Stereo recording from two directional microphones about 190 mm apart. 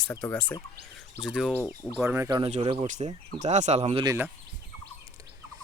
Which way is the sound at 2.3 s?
25° right (ahead or behind).